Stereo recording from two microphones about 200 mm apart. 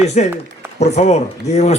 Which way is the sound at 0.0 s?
35° left (ahead or behind).